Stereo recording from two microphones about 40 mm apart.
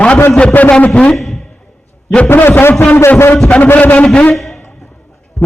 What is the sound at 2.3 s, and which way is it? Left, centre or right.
Speech, left.